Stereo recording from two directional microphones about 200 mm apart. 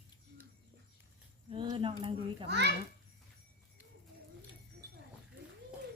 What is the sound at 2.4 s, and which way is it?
Speech, 55° right (ahead or behind).